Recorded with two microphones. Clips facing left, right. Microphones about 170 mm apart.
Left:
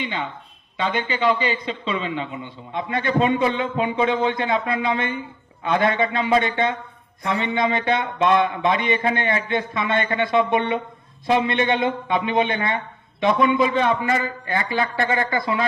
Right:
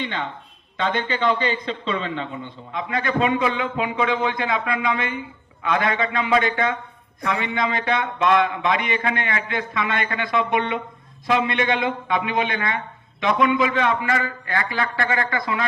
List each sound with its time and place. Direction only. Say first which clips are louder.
0.0 s a man's voice: even; 10° left (ahead or behind)
2.7 s a man's voice: left 2 dB; 25° left (ahead or behind)